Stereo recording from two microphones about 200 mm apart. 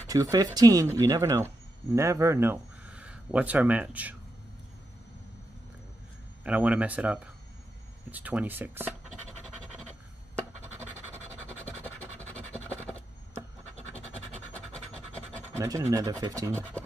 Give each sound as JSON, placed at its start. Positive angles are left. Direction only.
{"t": 0.1, "sound": "speech", "side_deg": -20}
{"t": 6.4, "sound": "speech", "side_deg": -5}
{"t": 11.8, "sound": "scratch", "side_deg": 10}
{"t": 15.5, "sound": "scratch", "side_deg": -15}
{"t": 15.9, "sound": "speech", "side_deg": -20}